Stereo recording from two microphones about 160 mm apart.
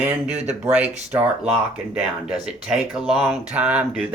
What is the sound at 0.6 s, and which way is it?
Speech, 10° right (ahead or behind).